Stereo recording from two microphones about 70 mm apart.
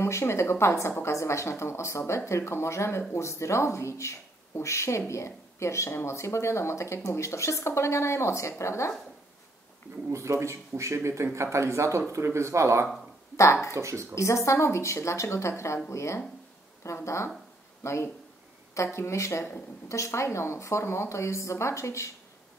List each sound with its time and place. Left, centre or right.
0.0 s a woman's voice: left
10.1 s speech: right
13.4 s a woman's voice: left
13.7 s speech: right
14.1 s a woman's voice: left